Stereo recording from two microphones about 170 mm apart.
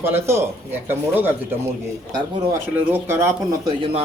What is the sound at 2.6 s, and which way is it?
A man's voice, 15° right (ahead or behind).